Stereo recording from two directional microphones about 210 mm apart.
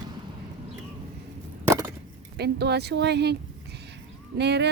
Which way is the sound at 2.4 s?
50° right (ahead or behind).